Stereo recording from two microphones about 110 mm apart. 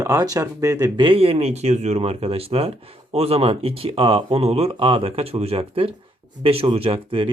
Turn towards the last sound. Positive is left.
turn(degrees=-55)  # may be behind; listen again after turning